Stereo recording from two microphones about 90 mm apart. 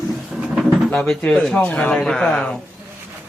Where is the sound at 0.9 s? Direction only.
15° left (ahead or behind).